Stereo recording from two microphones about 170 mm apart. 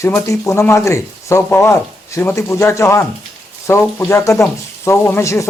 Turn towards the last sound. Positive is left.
turn(degrees=15)  # may be behind; listen again after turning